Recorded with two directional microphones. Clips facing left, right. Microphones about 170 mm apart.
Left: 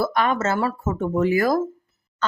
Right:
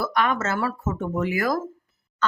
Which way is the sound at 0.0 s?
30° left (ahead or behind).